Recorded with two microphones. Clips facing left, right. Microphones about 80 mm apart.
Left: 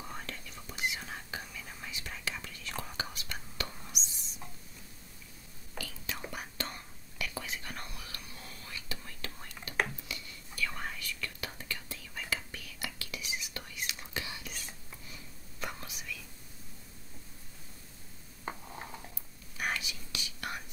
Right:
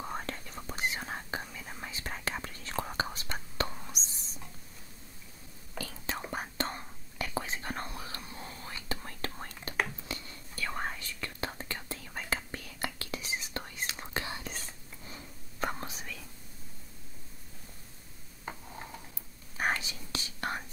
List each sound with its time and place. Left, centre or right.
0.0 s whispering: right
5.8 s whispering: right
19.5 s whispering: right